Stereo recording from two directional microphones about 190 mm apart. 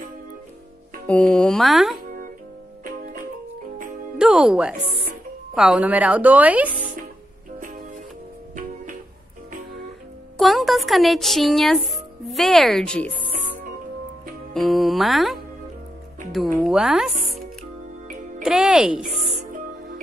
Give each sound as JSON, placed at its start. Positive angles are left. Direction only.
{"t": 1.0, "sound": "speech", "side_deg": 5}
{"t": 2.8, "sound": "music", "side_deg": -45}
{"t": 4.2, "sound": "speech", "side_deg": -5}
{"t": 10.3, "sound": "speech", "side_deg": 0}
{"t": 14.5, "sound": "speech", "side_deg": 0}
{"t": 16.6, "sound": "speech", "side_deg": -5}
{"t": 18.4, "sound": "speech", "side_deg": -5}